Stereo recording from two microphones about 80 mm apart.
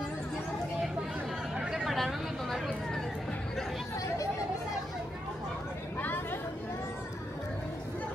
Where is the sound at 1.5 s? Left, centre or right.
Centre.